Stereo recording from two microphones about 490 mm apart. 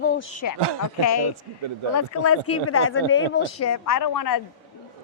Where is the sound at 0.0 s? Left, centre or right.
Centre.